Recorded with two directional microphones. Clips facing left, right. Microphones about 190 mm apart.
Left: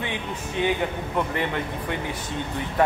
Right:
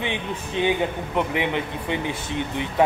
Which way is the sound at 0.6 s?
25° right (ahead or behind).